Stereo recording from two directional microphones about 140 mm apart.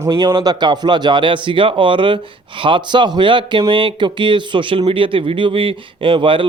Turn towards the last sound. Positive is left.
turn(degrees=-35)  # may be behind; listen again after turning